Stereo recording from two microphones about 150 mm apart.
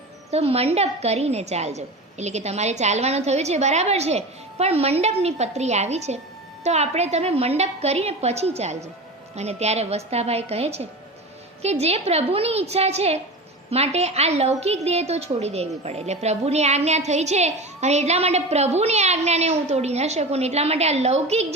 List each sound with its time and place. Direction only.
0.3 s a woman's voice: 45° right (ahead or behind)